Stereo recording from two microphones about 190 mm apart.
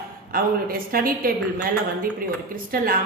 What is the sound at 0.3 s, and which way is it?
A woman's voice, 50° right (ahead or behind).